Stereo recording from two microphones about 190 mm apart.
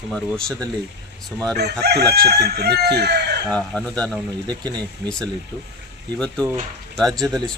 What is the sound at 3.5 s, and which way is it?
Speech, 5° left (ahead or behind).